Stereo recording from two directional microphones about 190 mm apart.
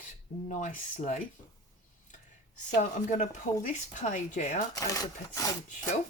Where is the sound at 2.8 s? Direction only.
40° left (ahead or behind).